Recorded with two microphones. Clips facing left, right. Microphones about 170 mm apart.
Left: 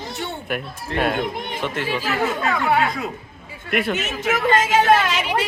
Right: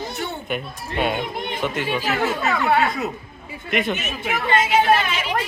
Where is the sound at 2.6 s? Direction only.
15° left (ahead or behind).